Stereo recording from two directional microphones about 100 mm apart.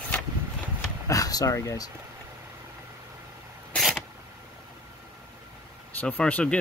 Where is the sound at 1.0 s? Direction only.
35° left (ahead or behind).